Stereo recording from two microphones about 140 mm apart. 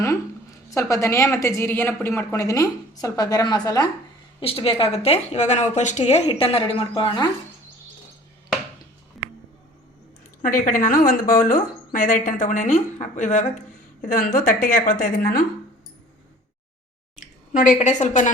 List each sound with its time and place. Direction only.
0.7 s a woman's voice: 20° left (ahead or behind)
4.4 s a woman's voice: 40° left (ahead or behind)
10.4 s a woman's voice: 75° left (ahead or behind)
17.2 s a sound: 65° left (ahead or behind)
18.0 s a woman's voice: 60° left (ahead or behind)